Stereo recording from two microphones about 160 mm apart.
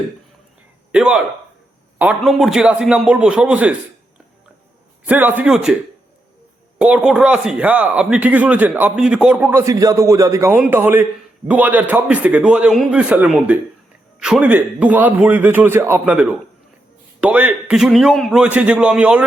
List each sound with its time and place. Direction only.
0.9 s speech: 5° right (ahead or behind)
5.0 s speech: 10° right (ahead or behind)
6.7 s speech: 5° right (ahead or behind)
9.5 s speech: 20° right (ahead or behind)